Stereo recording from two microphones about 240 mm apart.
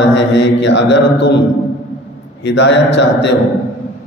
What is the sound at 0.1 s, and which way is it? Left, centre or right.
Speech, left.